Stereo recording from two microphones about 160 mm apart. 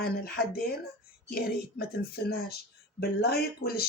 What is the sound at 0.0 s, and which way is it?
Speech, 75° left (ahead or behind).